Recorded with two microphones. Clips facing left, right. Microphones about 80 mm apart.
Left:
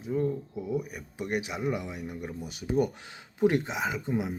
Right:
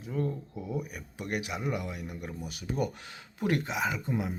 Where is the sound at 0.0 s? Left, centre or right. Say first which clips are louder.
Left 4 dB; centre.